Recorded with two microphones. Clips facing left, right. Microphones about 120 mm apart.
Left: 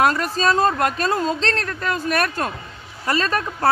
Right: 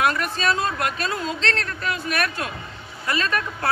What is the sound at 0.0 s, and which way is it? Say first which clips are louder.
A woman's voice: left 4 dB; 35° left (ahead or behind).